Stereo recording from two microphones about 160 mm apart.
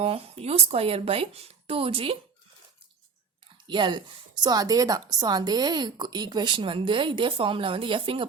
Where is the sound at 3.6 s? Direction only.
30° right (ahead or behind).